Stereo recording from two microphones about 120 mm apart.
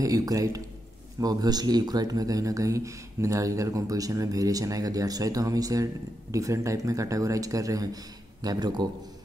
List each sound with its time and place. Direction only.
0.0 s speech: 30° right (ahead or behind)